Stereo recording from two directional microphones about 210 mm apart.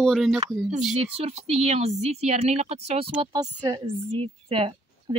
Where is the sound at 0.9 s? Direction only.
30° right (ahead or behind).